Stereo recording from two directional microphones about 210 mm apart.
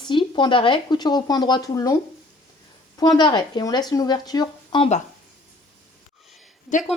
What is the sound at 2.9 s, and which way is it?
A woman's voice, 20° left (ahead or behind).